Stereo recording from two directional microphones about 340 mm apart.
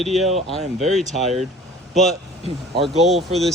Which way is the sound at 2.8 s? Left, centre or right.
Centre.